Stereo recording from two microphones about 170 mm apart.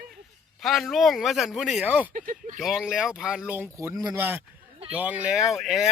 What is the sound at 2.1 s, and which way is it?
Speech, 55° right (ahead or behind).